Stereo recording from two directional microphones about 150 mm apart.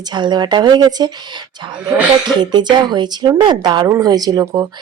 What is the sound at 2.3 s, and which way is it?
Speech, 30° right (ahead or behind).